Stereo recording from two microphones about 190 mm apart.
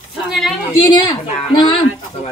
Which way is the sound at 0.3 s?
Centre (ahead or behind).